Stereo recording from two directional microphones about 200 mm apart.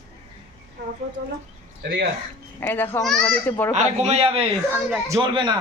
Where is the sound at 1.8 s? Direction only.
55° right (ahead or behind).